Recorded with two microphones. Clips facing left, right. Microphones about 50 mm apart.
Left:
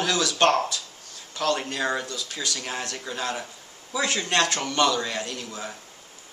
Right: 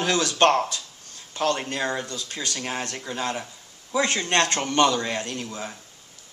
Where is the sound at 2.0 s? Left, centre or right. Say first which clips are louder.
Even; right.